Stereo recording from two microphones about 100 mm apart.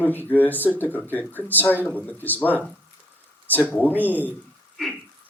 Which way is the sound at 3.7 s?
20° left (ahead or behind).